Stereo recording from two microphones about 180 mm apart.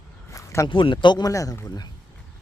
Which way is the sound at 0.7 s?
25° left (ahead or behind).